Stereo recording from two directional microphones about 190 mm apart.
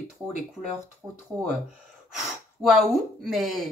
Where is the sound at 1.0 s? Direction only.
20° right (ahead or behind).